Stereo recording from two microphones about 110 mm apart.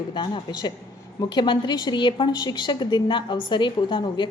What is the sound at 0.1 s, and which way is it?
A woman's voice, 45° left (ahead or behind).